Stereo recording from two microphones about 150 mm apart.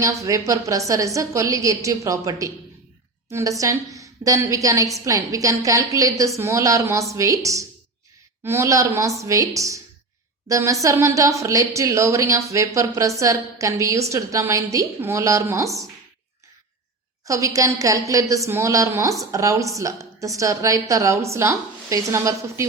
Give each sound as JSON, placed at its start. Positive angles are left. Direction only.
{"t": 0.0, "sound": "a woman's voice", "side_deg": -20}
{"t": 17.2, "sound": "speech", "side_deg": -20}